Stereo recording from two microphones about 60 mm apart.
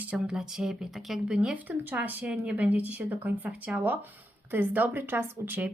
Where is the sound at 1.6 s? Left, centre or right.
Right.